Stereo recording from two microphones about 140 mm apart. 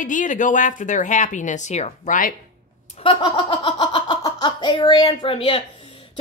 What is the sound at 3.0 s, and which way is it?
Speech, 35° left (ahead or behind).